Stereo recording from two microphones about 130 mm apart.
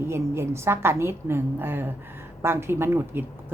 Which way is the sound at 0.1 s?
20° right (ahead or behind).